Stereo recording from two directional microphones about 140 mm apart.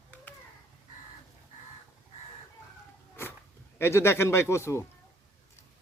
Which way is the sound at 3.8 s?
20° left (ahead or behind).